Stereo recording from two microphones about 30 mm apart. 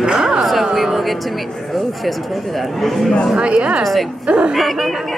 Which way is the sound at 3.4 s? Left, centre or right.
Right.